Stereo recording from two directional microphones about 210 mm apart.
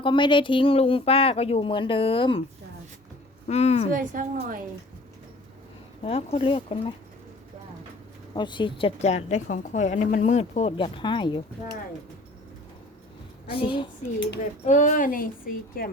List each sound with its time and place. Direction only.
0.0 s a woman's voice: 20° left (ahead or behind)
3.5 s a woman's voice: 30° left (ahead or behind)
3.9 s a woman's voice: 40° right (ahead or behind)
6.0 s a woman's voice: 30° left (ahead or behind)
8.4 s a woman's voice: 20° left (ahead or behind)
13.5 s a woman's voice: 25° left (ahead or behind)
14.6 s a woman's voice: 35° left (ahead or behind)